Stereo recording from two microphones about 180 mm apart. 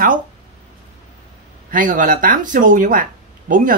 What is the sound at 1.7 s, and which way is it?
Speech, 45° right (ahead or behind).